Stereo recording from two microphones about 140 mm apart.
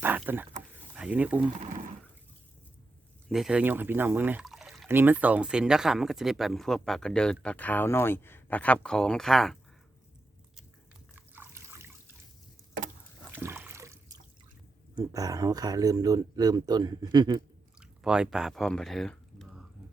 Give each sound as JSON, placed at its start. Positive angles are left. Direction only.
{"t": 0.3, "sound": "speech", "side_deg": -15}
{"t": 3.2, "sound": "speech", "side_deg": -5}
{"t": 4.4, "sound": "a sound", "side_deg": 0}
{"t": 4.9, "sound": "speech", "side_deg": -15}
{"t": 11.1, "sound": "trickle", "side_deg": -15}
{"t": 13.3, "sound": "water", "side_deg": -15}
{"t": 14.9, "sound": "speech", "side_deg": -25}
{"t": 17.7, "sound": "drip", "side_deg": -5}